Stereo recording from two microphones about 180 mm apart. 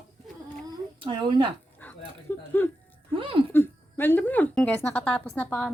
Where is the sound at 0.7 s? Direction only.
30° right (ahead or behind).